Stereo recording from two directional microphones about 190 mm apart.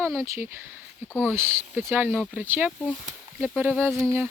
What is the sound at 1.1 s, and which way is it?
Speech, 10° left (ahead or behind).